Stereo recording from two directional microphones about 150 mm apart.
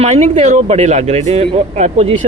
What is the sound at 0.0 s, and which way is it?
A man's voice, 45° right (ahead or behind).